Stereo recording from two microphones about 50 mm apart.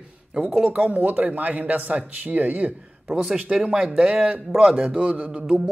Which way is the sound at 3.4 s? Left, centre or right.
Right.